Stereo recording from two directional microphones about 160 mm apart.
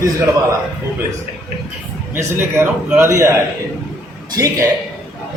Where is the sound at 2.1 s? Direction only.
15° right (ahead or behind).